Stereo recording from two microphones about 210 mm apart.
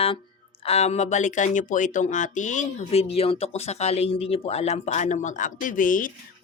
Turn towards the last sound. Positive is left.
turn(degrees=40)  # may be behind; listen again after turning